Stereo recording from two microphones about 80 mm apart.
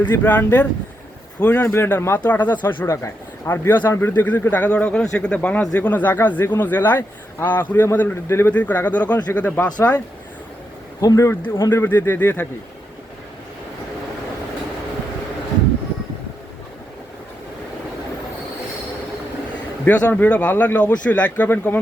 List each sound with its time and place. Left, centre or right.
0.0 s a man's voice: left
2.8 s a man's voice: left
8.5 s a man's voice: centre
11.0 s a man's voice: left
19.8 s a man's voice: centre